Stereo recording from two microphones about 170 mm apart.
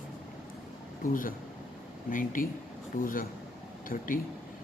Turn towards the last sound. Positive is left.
turn(degrees=55)  # may be behind; listen again after turning